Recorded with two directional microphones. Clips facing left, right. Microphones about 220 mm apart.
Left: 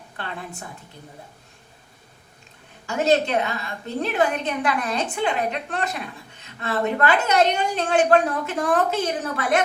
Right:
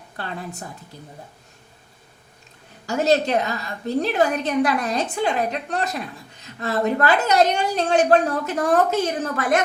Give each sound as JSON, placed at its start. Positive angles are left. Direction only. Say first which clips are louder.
{"t": 2.8, "sound": "a woman's voice", "louder": "right 1 dB", "side_deg": -40}